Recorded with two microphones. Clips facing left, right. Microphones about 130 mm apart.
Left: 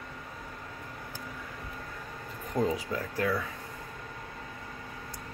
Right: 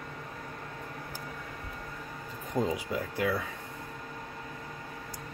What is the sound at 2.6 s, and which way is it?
Speech, 15° right (ahead or behind).